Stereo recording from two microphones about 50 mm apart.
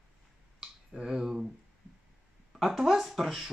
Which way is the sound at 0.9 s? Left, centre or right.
Centre.